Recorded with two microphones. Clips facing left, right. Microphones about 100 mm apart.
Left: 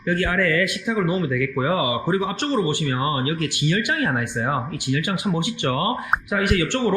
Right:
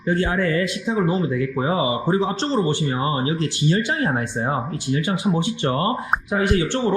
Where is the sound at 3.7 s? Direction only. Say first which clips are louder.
Right 1 dB; 20° right (ahead or behind).